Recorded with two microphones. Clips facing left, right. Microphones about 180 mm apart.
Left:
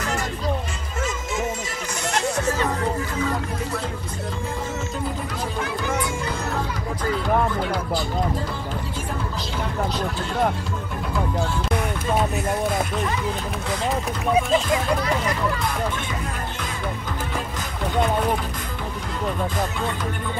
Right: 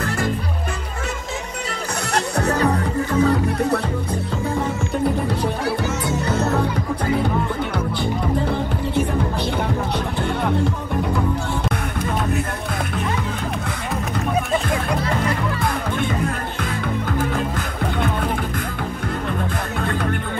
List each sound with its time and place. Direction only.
2.1 s music: 65° right (ahead or behind)
6.2 s music: 65° right (ahead or behind)